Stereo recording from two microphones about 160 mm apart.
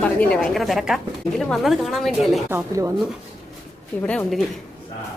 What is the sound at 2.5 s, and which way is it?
Speech, 15° right (ahead or behind).